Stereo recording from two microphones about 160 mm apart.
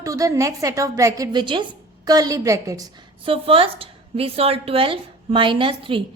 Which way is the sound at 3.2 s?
35° right (ahead or behind).